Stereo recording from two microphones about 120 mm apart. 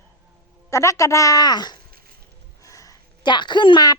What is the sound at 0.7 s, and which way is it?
A woman's voice, 25° left (ahead or behind).